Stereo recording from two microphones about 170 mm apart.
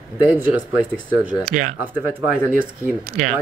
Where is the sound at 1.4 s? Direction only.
50° right (ahead or behind).